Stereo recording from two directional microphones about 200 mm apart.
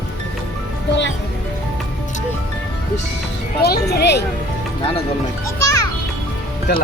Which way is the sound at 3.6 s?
55° left (ahead or behind).